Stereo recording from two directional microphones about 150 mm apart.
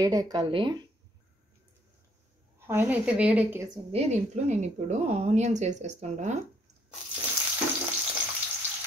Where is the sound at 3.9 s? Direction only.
45° right (ahead or behind).